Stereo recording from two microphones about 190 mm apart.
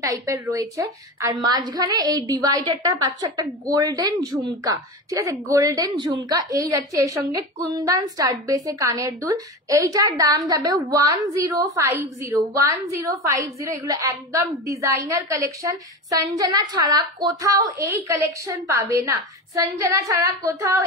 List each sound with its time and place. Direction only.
0.0 s a woman's voice: 15° right (ahead or behind)